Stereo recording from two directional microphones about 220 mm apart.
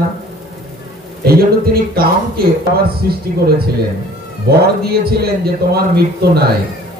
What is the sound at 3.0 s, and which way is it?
Speech, 45° right (ahead or behind).